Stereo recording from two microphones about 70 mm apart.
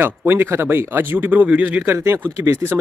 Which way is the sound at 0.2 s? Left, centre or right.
Right.